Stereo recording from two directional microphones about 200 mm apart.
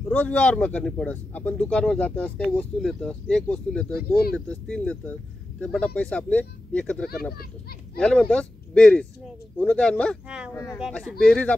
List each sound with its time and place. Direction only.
0.1 s speech: 10° left (ahead or behind)
10.5 s speech: 15° left (ahead or behind)
10.9 s speech: 5° left (ahead or behind)